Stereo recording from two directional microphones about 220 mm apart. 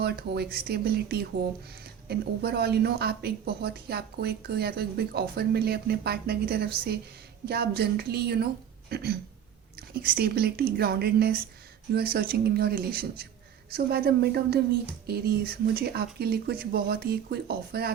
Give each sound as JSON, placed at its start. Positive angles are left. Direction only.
{"t": 0.0, "sound": "speech", "side_deg": -45}